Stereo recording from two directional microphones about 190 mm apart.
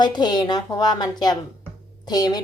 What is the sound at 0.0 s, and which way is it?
Speech, 20° left (ahead or behind).